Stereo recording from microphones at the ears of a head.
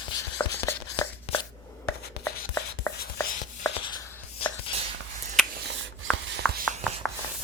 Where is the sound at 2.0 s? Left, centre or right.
Left.